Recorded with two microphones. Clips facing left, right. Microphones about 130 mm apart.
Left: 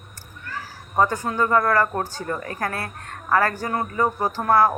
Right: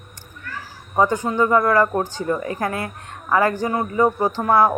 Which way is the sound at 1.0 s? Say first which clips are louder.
Right 3 dB; 15° right (ahead or behind).